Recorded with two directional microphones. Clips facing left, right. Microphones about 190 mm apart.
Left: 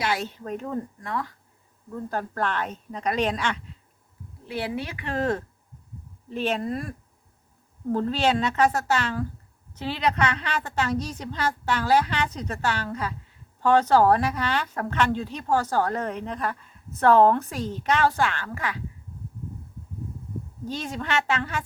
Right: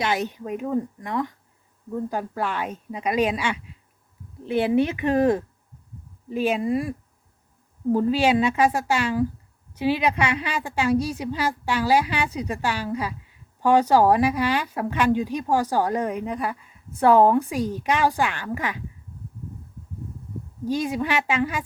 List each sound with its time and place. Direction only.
0.0 s speech: 20° right (ahead or behind)
2.0 s speech: 10° right (ahead or behind)
4.4 s speech: 25° right (ahead or behind)
7.9 s speech: 10° right (ahead or behind)
20.7 s speech: 10° right (ahead or behind)